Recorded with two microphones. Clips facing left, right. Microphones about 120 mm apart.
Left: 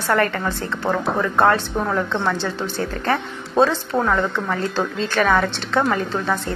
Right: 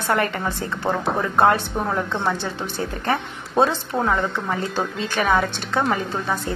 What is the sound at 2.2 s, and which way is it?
Speech, 15° right (ahead or behind).